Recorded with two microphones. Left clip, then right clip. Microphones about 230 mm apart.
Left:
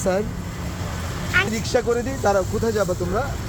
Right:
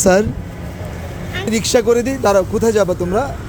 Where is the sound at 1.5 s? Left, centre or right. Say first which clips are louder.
Right 8 dB; right.